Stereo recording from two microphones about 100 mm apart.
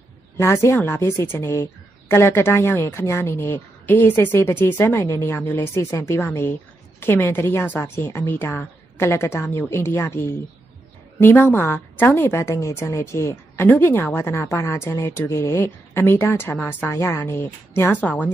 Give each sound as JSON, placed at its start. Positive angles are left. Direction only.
{"t": 0.4, "sound": "a woman's voice", "side_deg": 25}